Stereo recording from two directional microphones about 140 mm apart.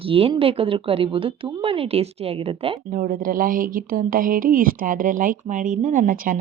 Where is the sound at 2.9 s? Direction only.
75° right (ahead or behind).